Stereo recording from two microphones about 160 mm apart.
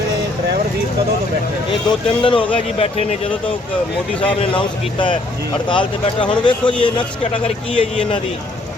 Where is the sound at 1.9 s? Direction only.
30° left (ahead or behind).